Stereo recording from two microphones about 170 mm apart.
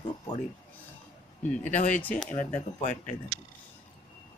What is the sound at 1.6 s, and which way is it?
Speech, 45° left (ahead or behind).